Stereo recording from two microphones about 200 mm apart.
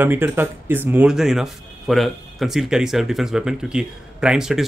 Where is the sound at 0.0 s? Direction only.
10° right (ahead or behind).